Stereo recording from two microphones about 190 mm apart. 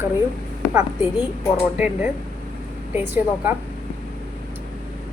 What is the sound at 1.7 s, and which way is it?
A woman's voice, 5° right (ahead or behind).